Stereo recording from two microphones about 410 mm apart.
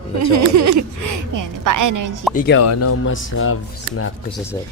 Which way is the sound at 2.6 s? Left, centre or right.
Left.